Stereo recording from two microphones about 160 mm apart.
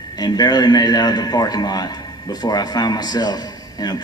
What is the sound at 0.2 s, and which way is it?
A man's voice, 25° left (ahead or behind).